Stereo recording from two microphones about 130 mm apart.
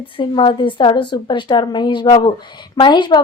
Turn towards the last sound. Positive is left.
turn(degrees=35)  # may be behind; listen again after turning